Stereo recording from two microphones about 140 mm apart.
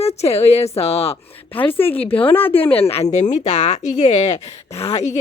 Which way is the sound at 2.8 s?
45° left (ahead or behind).